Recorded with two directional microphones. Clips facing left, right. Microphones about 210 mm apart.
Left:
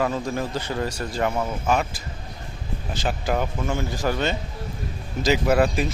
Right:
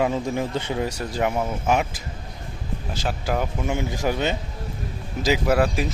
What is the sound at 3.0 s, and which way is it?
Speech, 5° right (ahead or behind).